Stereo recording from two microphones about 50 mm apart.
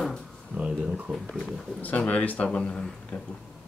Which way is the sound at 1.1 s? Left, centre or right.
Right.